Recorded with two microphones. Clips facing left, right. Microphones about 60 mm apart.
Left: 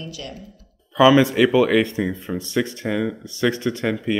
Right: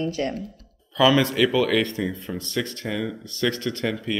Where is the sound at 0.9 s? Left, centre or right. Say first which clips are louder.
Left 5 dB; centre.